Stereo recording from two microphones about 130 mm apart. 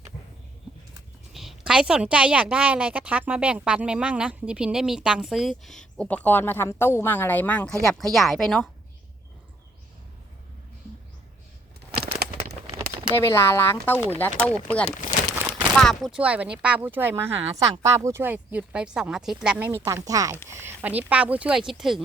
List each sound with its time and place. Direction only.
1.3 s a woman's voice: centre (ahead or behind)
12.4 s a sound: 45° right (ahead or behind)
13.1 s a woman's voice: 20° left (ahead or behind); by 16.2 s centre (ahead or behind)
16.2 s speech: 10° right (ahead or behind)